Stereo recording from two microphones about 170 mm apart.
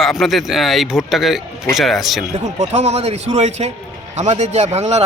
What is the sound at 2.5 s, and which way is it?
A man's voice, 40° right (ahead or behind).